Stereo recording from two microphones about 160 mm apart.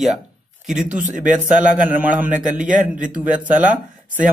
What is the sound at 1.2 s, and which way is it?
Speech, 55° right (ahead or behind).